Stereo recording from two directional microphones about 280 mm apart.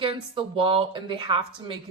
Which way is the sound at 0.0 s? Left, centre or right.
Centre.